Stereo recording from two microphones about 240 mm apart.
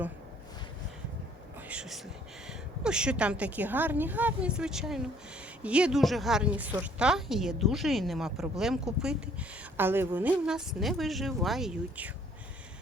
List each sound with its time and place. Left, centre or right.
1.6 s whispering: centre
2.5 s a woman's voice: centre